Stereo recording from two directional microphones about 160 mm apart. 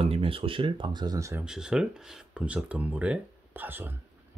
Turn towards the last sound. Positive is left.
turn(degrees=-15)  # may be behind; listen again after turning